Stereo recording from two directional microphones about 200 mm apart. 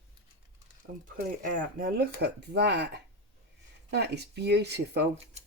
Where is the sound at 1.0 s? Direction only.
40° right (ahead or behind).